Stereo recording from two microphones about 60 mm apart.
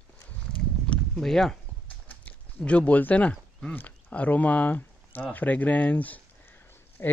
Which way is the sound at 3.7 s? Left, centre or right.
Left.